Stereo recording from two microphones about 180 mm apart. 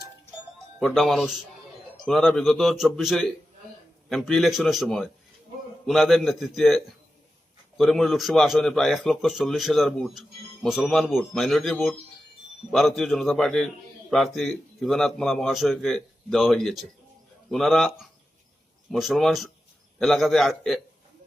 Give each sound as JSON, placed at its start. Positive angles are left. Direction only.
{"t": 0.8, "sound": "a man's voice", "side_deg": 0}